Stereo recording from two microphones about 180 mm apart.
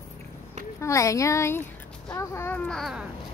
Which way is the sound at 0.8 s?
15° left (ahead or behind).